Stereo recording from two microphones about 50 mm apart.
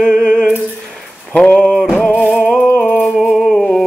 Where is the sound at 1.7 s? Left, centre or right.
Centre.